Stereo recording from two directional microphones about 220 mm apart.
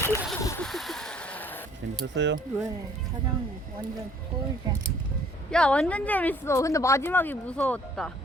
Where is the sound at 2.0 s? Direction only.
55° right (ahead or behind).